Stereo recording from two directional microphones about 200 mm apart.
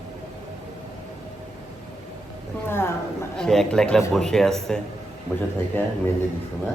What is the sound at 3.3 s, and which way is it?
A man's voice, 5° left (ahead or behind).